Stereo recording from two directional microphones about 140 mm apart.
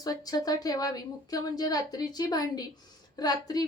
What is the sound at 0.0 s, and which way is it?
A woman's voice, 25° left (ahead or behind).